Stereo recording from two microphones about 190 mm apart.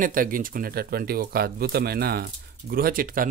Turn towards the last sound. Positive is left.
turn(degrees=-45)  # may be behind; listen again after turning